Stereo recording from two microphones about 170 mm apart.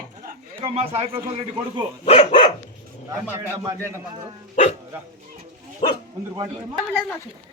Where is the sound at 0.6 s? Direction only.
40° right (ahead or behind).